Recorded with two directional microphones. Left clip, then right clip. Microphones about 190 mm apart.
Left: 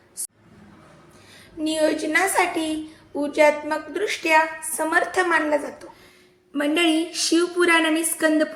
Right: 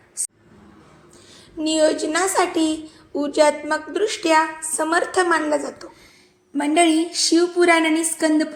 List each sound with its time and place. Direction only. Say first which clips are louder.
1.5 s a woman's voice: right 3 dB; 15° right (ahead or behind)